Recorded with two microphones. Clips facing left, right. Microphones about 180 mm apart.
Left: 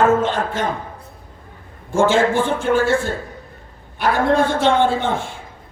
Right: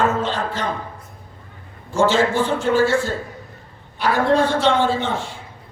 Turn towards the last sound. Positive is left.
turn(degrees=55)  # may be behind; listen again after turning